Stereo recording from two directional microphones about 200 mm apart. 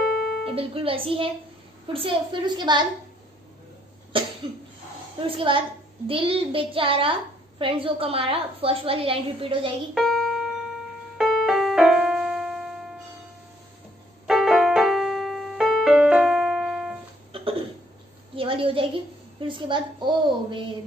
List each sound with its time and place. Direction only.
0.6 s a child's voice: 25° right (ahead or behind)
4.1 s a child's voice: 25° right (ahead or behind)
9.9 s music: 5° left (ahead or behind)
11.1 s keyboard: centre (ahead or behind)
14.2 s keyboard: centre (ahead or behind)
17.3 s a sound: 25° right (ahead or behind)
19.4 s a child's voice: 25° right (ahead or behind)